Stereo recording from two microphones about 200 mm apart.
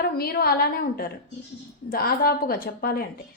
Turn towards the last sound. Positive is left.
turn(degrees=45)  # may be behind; listen again after turning